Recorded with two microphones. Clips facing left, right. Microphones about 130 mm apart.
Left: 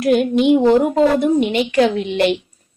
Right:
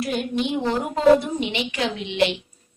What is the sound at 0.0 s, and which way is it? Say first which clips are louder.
A woman's voice: left 10 dB; 60° left (ahead or behind).